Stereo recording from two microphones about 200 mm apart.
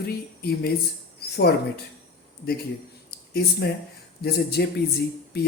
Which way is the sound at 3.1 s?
55° left (ahead or behind).